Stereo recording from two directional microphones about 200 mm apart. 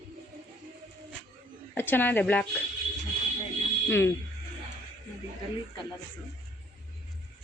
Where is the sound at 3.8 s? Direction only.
10° left (ahead or behind).